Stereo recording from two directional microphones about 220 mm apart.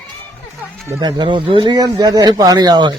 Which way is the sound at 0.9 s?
20° right (ahead or behind).